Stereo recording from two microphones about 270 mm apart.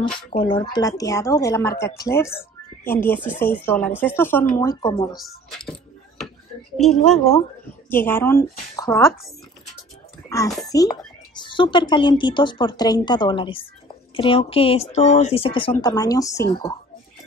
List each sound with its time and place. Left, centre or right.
0.4 s a woman's voice: centre
5.1 s coin: centre
7.1 s a woman's voice: centre
10.7 s a woman's voice: centre